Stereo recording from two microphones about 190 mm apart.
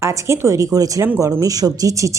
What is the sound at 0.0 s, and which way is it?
Speech, 15° right (ahead or behind).